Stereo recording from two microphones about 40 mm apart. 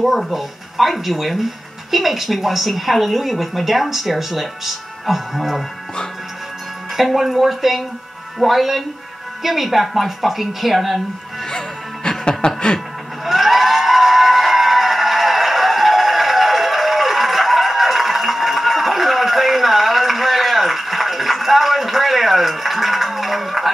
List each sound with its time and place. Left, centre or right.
0.0 s speech: centre
7.0 s speech: centre
11.4 s music: centre
13.2 s a sound: centre